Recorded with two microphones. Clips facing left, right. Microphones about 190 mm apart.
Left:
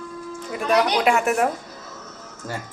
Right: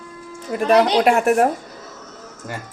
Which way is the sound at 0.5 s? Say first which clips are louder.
Right 5 dB; 50° right (ahead or behind).